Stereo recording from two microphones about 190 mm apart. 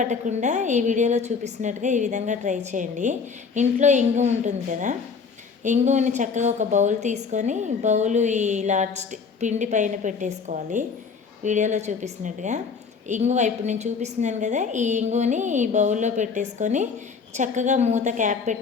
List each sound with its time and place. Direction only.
0.0 s a woman's voice: 40° right (ahead or behind)